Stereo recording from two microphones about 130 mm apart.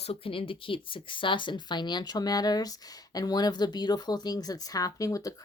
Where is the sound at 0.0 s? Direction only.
45° left (ahead or behind).